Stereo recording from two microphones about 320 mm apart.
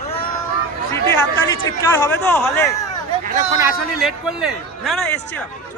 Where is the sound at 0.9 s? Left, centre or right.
Centre.